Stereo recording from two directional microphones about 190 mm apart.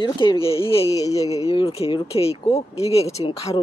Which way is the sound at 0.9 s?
20° left (ahead or behind).